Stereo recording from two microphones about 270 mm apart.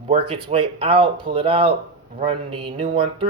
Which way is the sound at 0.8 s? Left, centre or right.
Centre.